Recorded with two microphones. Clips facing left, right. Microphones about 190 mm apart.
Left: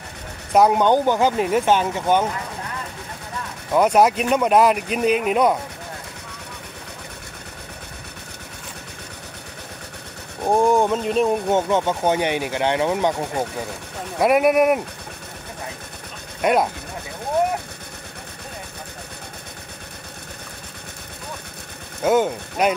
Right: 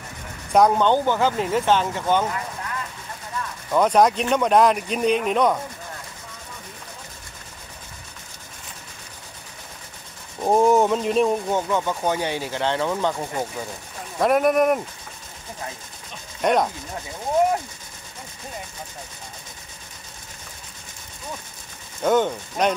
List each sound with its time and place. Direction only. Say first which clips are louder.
0.5 s speech: left 1 dB; 5° left (ahead or behind)
3.7 s speech: left 1 dB; 10° left (ahead or behind)
10.5 s speech: even; centre (ahead or behind)
11.4 s speech: left 4 dB; 20° left (ahead or behind)
16.3 s speech: left 1 dB; 5° left (ahead or behind)
22.0 s speech: left 1 dB; 10° left (ahead or behind)